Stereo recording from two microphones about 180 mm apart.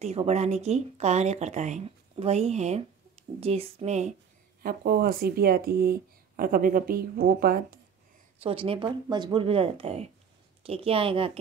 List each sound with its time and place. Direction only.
0.0 s speech: 35° right (ahead or behind)
4.6 s speech: 55° right (ahead or behind)
8.4 s speech: 30° right (ahead or behind)